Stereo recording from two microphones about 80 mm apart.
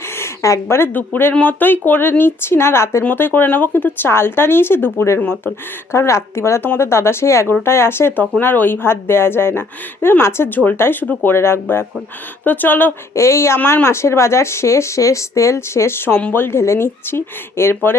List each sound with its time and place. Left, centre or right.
0.2 s a sound: left
0.9 s a woman's voice: left
3.0 s a woman's voice: left
13.1 s speech: left
13.6 s a woman's voice: left
13.8 s speech: left